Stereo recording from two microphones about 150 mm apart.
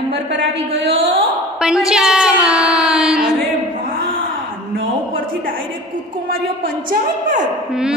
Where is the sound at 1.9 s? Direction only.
5° right (ahead or behind).